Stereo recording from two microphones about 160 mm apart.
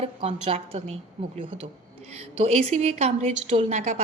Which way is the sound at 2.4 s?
40° right (ahead or behind).